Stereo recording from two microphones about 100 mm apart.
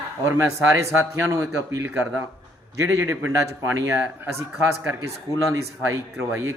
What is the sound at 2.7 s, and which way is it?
Speech, 30° right (ahead or behind).